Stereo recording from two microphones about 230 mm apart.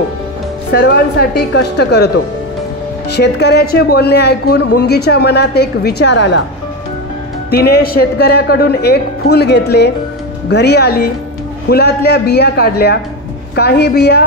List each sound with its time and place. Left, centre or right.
0.7 s a woman's voice: left
3.2 s a woman's voice: left
7.5 s a woman's voice: left